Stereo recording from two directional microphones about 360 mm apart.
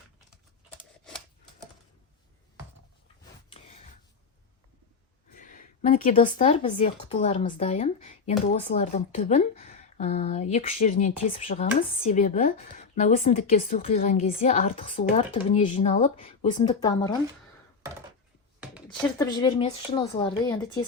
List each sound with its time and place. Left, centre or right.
3.5 s a sound: centre
5.3 s speech: left
19.2 s speech: centre